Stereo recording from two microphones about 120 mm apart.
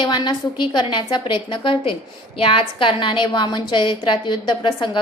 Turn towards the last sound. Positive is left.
turn(degrees=40)  # may be behind; listen again after turning